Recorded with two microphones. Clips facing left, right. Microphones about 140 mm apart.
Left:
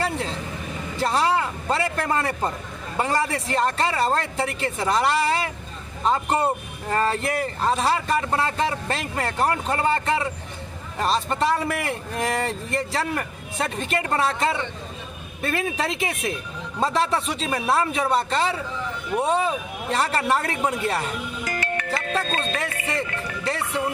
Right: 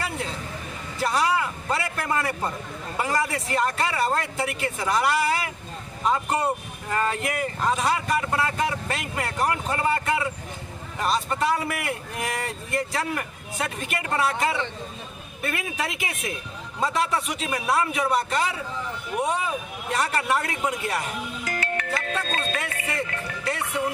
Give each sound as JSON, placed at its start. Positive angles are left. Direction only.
{"t": 0.9, "sound": "a man's voice", "side_deg": 30}
{"t": 22.1, "sound": "speech", "side_deg": 30}